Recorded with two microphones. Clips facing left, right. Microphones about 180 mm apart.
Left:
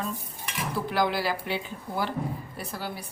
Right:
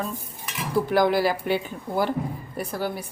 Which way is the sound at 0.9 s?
45° right (ahead or behind).